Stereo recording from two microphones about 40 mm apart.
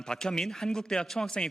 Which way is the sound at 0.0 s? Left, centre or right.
Centre.